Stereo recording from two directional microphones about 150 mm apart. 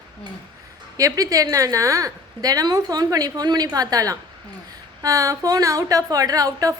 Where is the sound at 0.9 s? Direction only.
25° right (ahead or behind).